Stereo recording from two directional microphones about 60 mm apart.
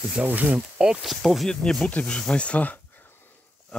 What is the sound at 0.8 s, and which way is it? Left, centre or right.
Speech, centre.